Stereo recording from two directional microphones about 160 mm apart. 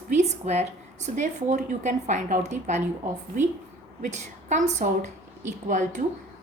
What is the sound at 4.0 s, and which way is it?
A woman's voice, 50° right (ahead or behind).